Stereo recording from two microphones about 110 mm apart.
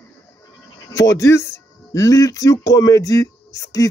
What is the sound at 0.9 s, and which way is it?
Speech, 30° left (ahead or behind).